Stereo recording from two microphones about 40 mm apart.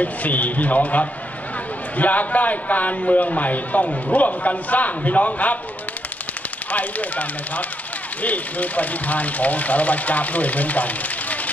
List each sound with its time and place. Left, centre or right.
0.0 s a man's voice: left
6.7 s speech: left